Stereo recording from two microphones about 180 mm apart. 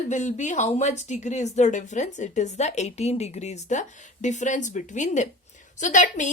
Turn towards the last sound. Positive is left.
turn(degrees=45)  # may be behind; listen again after turning